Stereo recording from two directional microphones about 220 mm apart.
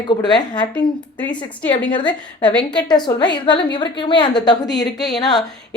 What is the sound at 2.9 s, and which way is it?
A woman's voice, 20° left (ahead or behind).